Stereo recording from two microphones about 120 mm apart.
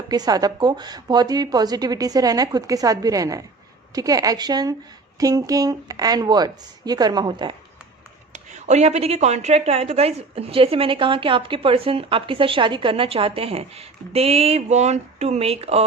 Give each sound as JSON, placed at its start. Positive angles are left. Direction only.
{"t": 0.1, "sound": "speech", "side_deg": -35}
{"t": 8.3, "sound": "a woman's voice", "side_deg": -80}